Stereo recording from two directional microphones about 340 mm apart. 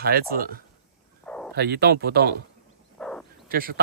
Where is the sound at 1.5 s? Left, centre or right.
Right.